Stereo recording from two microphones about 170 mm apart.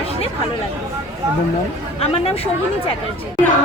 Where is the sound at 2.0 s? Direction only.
35° left (ahead or behind).